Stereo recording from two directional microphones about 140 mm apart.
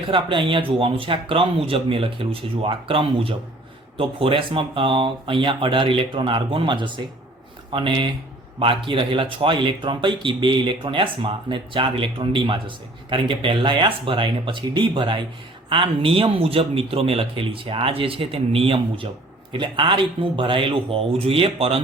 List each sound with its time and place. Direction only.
0.1 s speech: 35° right (ahead or behind)